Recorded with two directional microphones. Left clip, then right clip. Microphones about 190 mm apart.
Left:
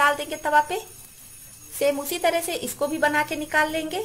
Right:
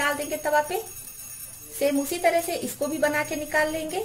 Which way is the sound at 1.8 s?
45° left (ahead or behind).